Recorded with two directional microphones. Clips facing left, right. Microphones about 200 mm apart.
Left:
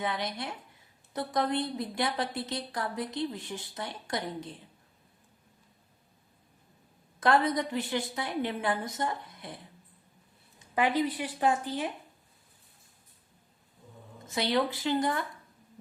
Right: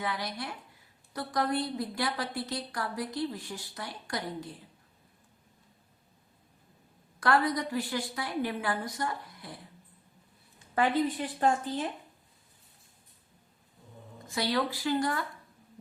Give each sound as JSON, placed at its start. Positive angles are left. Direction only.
{"t": 0.0, "sound": "a woman's voice", "side_deg": 20}
{"t": 7.2, "sound": "a woman's voice", "side_deg": 20}
{"t": 10.8, "sound": "a woman's voice", "side_deg": 15}
{"t": 14.3, "sound": "a woman's voice", "side_deg": 20}